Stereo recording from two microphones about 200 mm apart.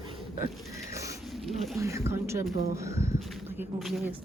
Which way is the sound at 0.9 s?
15° right (ahead or behind).